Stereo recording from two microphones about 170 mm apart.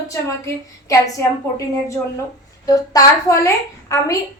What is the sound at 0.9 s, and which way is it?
A woman's voice, 20° left (ahead or behind).